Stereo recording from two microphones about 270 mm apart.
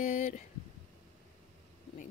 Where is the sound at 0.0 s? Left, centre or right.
Left.